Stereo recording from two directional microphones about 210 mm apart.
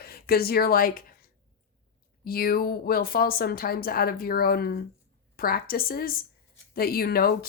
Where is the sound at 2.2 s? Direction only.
45° left (ahead or behind).